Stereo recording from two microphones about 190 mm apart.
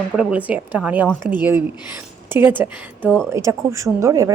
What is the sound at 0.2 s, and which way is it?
Speech, 5° right (ahead or behind).